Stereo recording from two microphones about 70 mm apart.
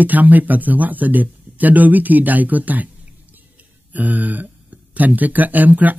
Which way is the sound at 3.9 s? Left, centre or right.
Right.